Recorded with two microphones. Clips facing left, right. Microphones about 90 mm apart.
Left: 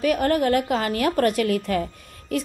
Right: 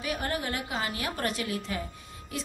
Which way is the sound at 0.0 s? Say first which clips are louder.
Left 12 dB; 55° left (ahead or behind).